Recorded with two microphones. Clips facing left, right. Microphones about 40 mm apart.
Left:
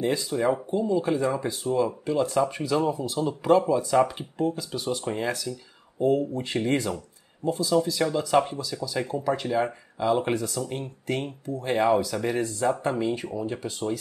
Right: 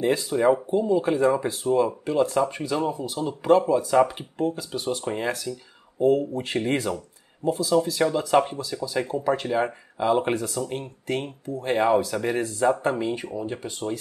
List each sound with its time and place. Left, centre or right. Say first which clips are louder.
0.0 s speech: right 4 dB; centre
5.9 s speech: right 2 dB; centre
6.3 s speech: right 1 dB; centre